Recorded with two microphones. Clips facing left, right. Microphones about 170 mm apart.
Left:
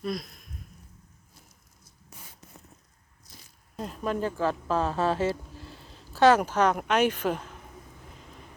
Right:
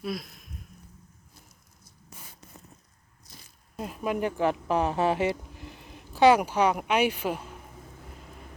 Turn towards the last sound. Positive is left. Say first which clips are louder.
# left 1 dB
turn(degrees=-10)  # may be behind; listen again after turning